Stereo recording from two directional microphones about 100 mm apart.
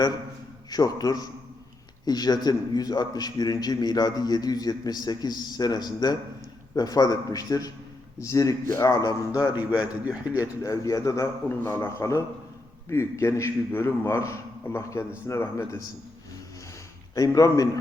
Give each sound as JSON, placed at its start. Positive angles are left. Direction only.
{"t": 0.7, "sound": "a man's voice", "side_deg": 40}
{"t": 11.4, "sound": "a man's voice", "side_deg": 25}
{"t": 17.2, "sound": "a man's voice", "side_deg": 35}